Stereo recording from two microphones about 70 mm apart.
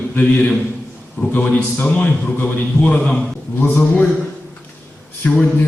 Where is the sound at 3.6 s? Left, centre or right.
Left.